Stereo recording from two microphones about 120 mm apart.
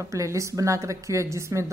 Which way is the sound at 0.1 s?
25° right (ahead or behind).